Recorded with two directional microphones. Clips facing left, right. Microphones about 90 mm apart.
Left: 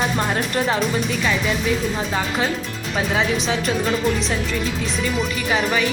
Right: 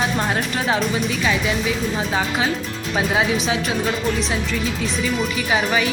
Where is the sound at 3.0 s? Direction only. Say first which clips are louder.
Right 1 dB; 5° right (ahead or behind).